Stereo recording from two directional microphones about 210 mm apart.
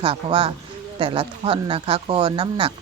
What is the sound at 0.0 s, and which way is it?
Speech, 25° right (ahead or behind).